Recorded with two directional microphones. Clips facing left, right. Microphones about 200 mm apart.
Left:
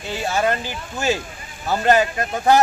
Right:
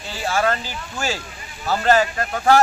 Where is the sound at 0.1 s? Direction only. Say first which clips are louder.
Left 1 dB; 20° left (ahead or behind).